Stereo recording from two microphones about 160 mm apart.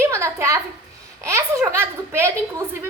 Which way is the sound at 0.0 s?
15° right (ahead or behind).